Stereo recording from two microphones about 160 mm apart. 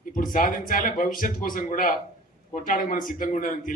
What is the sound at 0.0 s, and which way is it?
Speech, 55° left (ahead or behind).